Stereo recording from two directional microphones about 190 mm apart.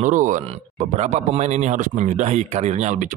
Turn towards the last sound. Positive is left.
turn(degrees=-40)  # may be behind; listen again after turning